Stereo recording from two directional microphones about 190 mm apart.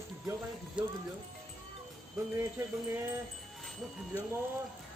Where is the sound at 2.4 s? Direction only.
10° right (ahead or behind).